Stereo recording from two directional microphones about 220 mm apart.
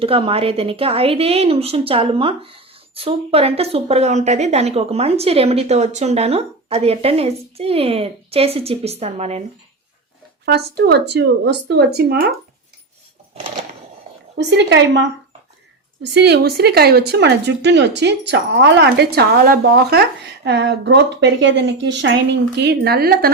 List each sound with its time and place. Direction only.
0.0 s a woman's voice: 25° right (ahead or behind)
10.4 s speech: 45° right (ahead or behind)
14.3 s speech: 50° right (ahead or behind)
16.1 s speech: 50° right (ahead or behind)